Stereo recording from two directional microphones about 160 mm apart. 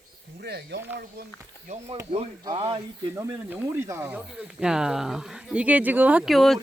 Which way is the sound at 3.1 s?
15° right (ahead or behind).